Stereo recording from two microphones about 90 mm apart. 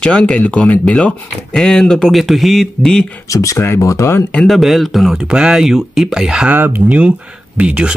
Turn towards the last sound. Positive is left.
turn(degrees=-10)  # may be behind; listen again after turning